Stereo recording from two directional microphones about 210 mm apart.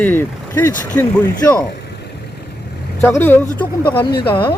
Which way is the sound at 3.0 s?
10° left (ahead or behind).